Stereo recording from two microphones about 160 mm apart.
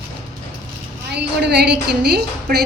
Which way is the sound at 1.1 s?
90° right.